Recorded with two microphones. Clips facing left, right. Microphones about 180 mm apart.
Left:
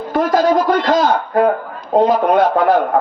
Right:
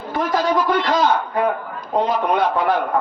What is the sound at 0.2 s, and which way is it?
A man's voice, 45° left (ahead or behind).